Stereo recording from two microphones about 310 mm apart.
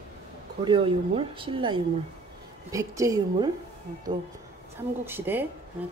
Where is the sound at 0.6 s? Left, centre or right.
Centre.